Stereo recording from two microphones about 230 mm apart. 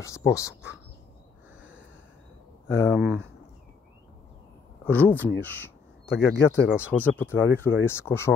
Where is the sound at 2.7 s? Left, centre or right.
Centre.